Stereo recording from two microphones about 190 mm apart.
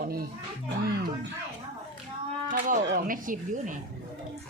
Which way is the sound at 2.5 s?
45° right (ahead or behind).